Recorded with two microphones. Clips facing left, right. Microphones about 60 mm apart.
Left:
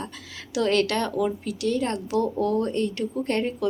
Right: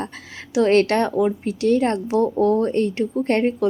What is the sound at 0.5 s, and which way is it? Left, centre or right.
A woman's voice, right.